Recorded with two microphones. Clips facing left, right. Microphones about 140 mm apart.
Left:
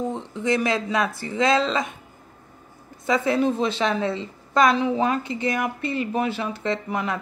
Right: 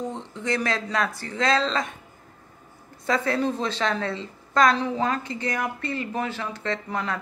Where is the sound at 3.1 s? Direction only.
20° left (ahead or behind).